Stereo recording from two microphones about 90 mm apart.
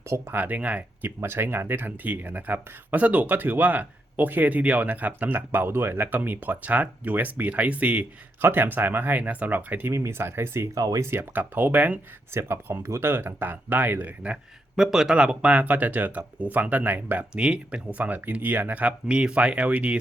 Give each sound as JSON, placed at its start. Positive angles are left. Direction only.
{"t": 0.0, "sound": "speech", "side_deg": -35}
{"t": 0.3, "sound": "speech", "side_deg": -15}
{"t": 10.8, "sound": "speech", "side_deg": -40}
{"t": 11.0, "sound": "speech", "side_deg": -25}
{"t": 14.8, "sound": "speech", "side_deg": -5}